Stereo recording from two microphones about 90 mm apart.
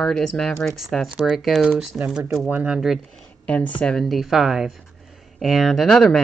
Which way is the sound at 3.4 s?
15° left (ahead or behind).